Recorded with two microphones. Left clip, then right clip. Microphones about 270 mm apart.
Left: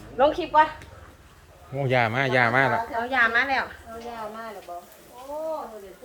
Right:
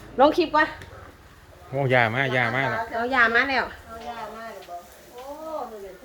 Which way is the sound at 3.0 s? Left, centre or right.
Right.